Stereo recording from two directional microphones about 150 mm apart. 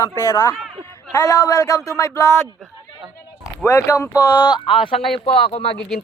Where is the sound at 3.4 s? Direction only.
15° left (ahead or behind).